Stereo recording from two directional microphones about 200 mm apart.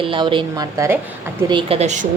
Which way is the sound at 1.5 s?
30° right (ahead or behind).